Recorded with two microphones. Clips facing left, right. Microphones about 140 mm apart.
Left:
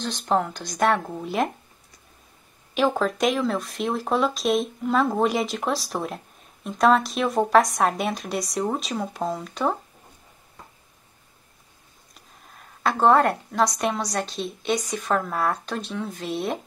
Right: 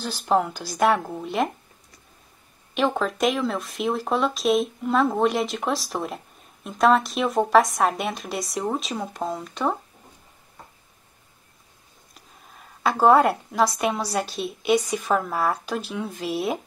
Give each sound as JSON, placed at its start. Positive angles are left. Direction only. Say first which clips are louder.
{"t": 0.0, "sound": "speech", "louder": "right 1 dB", "side_deg": -5}
{"t": 2.7, "sound": "speech", "louder": "left 1 dB", "side_deg": 0}
{"t": 12.1, "sound": "a sound", "louder": "right 1 dB", "side_deg": 0}
{"t": 14.1, "sound": "speech", "louder": "right 1 dB", "side_deg": -5}